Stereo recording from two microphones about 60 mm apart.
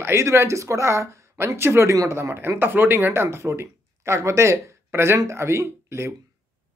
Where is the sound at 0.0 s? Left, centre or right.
Right.